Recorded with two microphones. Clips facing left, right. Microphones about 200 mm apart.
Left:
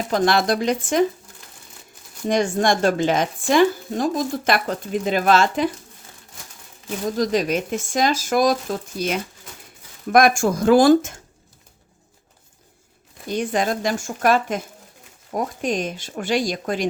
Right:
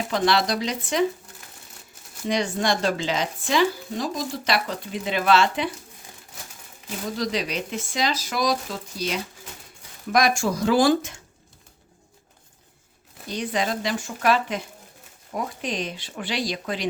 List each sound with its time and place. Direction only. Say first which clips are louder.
0.1 s speech: left 4 dB; 50° left (ahead or behind)
2.2 s speech: left 5 dB; 50° left (ahead or behind)
7.2 s speech: left 7 dB; 45° left (ahead or behind)
13.2 s speech: left 4 dB; 50° left (ahead or behind)